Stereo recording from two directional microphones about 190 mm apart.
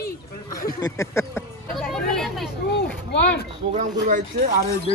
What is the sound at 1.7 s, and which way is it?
Vehicle, centre (ahead or behind).